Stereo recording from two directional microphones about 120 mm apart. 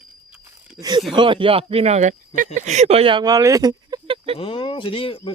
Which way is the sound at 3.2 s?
30° right (ahead or behind).